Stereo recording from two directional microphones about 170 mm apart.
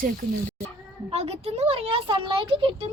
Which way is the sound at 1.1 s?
35° right (ahead or behind).